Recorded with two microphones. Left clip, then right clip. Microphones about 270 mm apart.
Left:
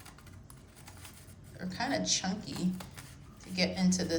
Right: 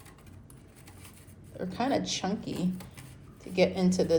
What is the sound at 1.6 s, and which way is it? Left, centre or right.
A woman's voice, centre.